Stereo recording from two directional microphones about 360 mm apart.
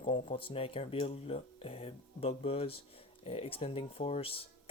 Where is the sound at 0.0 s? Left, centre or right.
Centre.